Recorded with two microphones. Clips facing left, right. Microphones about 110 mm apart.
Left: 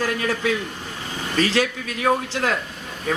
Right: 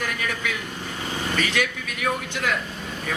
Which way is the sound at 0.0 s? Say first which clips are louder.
Left 6 dB; 35° left (ahead or behind).